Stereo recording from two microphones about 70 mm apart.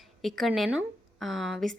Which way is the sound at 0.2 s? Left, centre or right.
Centre.